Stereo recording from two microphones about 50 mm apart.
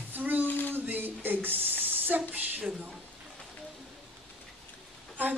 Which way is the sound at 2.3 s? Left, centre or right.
Right.